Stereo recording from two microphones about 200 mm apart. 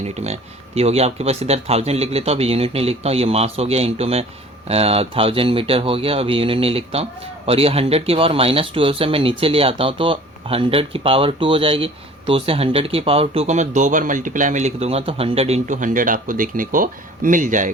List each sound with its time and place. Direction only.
0.8 s speech: 30° right (ahead or behind)